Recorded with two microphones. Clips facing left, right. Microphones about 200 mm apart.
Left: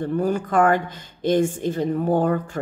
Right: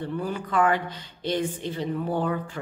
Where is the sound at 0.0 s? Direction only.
45° left (ahead or behind).